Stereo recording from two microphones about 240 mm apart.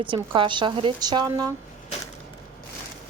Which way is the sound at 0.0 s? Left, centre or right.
Right.